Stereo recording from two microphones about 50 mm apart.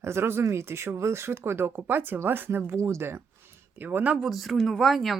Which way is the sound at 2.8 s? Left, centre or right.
Right.